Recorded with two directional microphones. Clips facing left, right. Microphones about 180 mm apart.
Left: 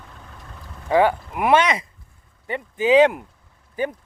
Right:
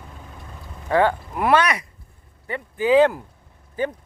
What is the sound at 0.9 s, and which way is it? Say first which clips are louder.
Speech: left 1 dB; 15° left (ahead or behind).